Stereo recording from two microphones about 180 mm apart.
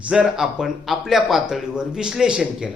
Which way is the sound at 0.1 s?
5° right (ahead or behind).